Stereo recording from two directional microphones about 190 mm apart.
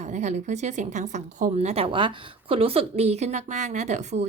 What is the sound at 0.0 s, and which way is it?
A woman's voice, 40° right (ahead or behind).